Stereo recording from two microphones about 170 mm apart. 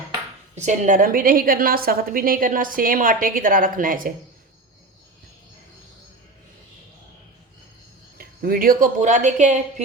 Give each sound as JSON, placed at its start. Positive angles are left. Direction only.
{"t": 0.5, "sound": "a woman's voice", "side_deg": -45}
{"t": 8.2, "sound": "a woman's voice", "side_deg": -60}